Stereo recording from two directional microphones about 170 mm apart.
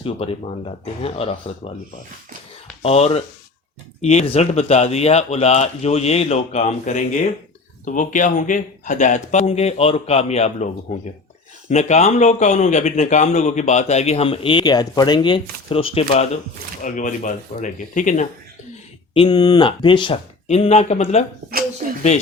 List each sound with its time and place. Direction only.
0.0 s speech: 35° left (ahead or behind)
2.8 s speech: 35° left (ahead or behind)
16.8 s speech: 50° left (ahead or behind)
19.1 s speech: 30° left (ahead or behind)